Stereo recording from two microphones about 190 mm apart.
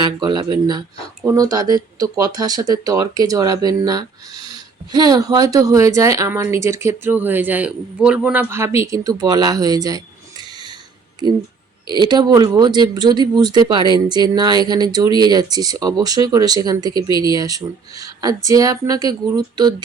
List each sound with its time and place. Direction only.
0.0 s speech: 25° right (ahead or behind)
11.9 s speech: 25° right (ahead or behind)